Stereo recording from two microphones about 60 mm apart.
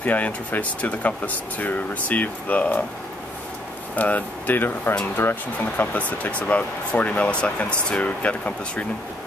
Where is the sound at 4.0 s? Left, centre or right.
Left.